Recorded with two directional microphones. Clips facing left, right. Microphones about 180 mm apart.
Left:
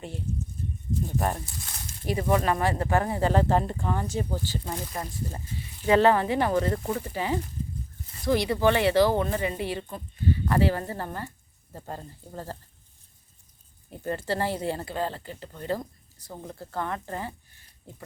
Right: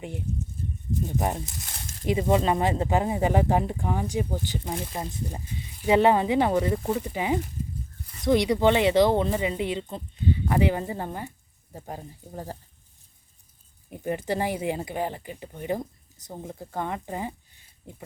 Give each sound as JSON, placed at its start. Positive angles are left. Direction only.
{"t": 0.0, "sound": "speech", "side_deg": -15}
{"t": 13.9, "sound": "speech", "side_deg": -15}